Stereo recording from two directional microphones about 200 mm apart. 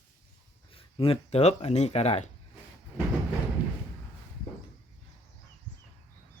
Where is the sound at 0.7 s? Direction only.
25° left (ahead or behind).